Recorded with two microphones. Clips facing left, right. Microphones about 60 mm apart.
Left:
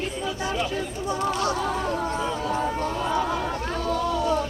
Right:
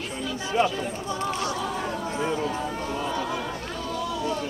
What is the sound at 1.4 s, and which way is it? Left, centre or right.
Speech, left.